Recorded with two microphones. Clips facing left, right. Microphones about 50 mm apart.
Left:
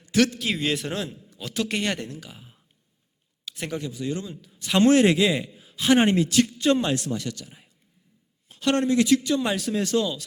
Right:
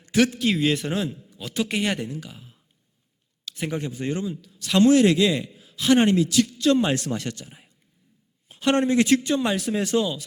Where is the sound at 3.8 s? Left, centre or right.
Right.